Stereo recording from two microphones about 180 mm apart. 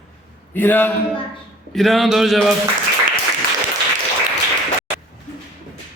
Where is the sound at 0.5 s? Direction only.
10° left (ahead or behind).